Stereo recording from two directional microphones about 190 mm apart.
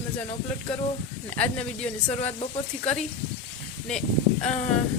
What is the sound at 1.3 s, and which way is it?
Speech, 5° left (ahead or behind).